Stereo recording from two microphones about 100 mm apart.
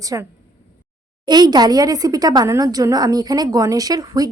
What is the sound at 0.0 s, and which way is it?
A woman's voice, 35° right (ahead or behind).